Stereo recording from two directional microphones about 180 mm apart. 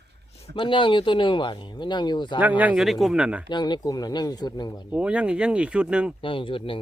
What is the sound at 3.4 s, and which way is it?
Speech, 25° left (ahead or behind).